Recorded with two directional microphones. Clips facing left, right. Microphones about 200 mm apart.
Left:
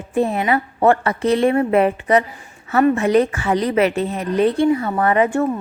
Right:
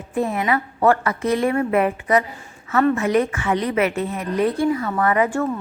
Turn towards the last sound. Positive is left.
turn(degrees=20)  # may be behind; listen again after turning